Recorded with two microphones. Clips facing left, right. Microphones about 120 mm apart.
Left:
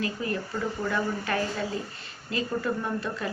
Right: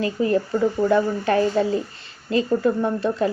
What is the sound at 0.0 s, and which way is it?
Speech, 30° right (ahead or behind).